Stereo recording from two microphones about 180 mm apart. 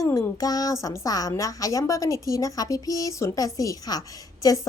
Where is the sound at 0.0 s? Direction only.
20° left (ahead or behind).